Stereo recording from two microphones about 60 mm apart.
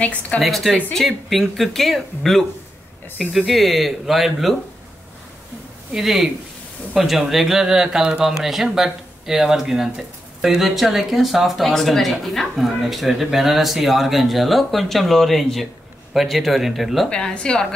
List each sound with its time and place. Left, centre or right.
0.0 s a woman's voice: left
0.4 s speech: centre
5.9 s speech: centre
17.1 s a woman's voice: centre